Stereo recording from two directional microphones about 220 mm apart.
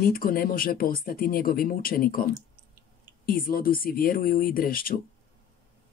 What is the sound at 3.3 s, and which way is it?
Speech, 40° left (ahead or behind).